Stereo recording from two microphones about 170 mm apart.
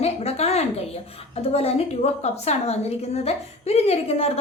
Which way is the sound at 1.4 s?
35° left (ahead or behind).